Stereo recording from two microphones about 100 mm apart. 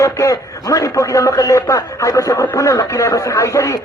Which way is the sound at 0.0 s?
30° left (ahead or behind).